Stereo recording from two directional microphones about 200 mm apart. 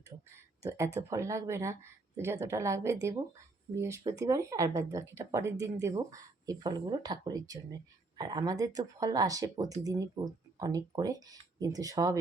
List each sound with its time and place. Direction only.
0.1 s speech: 20° right (ahead or behind)